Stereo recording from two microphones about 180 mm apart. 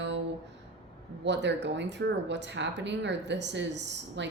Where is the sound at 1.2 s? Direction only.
75° right (ahead or behind).